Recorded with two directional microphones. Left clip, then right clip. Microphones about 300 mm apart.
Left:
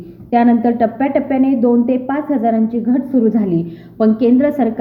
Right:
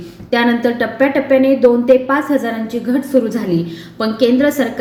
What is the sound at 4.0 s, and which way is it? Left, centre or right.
Speech, centre.